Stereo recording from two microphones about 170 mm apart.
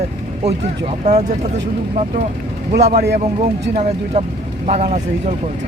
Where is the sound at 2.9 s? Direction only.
75° right (ahead or behind).